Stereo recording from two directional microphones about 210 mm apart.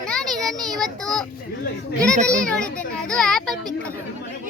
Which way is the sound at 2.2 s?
5° left (ahead or behind).